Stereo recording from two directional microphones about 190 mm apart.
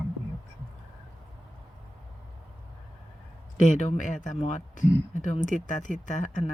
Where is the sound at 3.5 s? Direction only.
40° left (ahead or behind).